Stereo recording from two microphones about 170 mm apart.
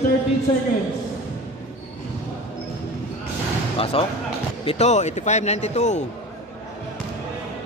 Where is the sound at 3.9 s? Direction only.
35° left (ahead or behind).